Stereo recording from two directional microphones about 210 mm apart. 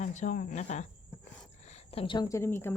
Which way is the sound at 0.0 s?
35° left (ahead or behind).